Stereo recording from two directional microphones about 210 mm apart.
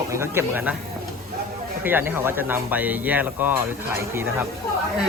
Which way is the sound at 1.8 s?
10° right (ahead or behind).